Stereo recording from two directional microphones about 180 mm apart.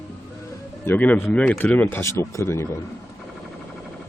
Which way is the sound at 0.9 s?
10° left (ahead or behind).